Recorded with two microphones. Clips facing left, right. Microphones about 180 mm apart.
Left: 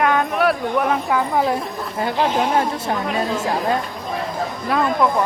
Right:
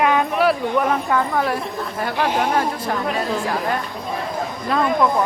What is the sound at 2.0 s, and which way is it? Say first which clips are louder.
Speech: left 2 dB; 20° left (ahead or behind).